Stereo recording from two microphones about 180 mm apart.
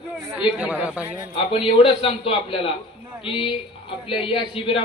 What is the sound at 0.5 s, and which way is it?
Speech, 5° right (ahead or behind).